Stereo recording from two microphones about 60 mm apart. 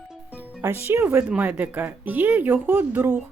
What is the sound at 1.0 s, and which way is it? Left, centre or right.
Speech, right.